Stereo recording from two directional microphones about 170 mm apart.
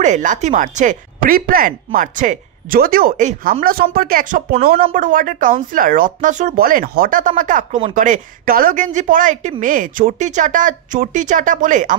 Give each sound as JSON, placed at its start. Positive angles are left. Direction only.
{"t": 0.0, "sound": "a woman's voice", "side_deg": -45}
{"t": 3.6, "sound": "a woman's voice", "side_deg": -60}